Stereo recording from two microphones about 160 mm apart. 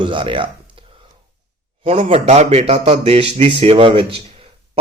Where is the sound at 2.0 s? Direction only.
40° right (ahead or behind).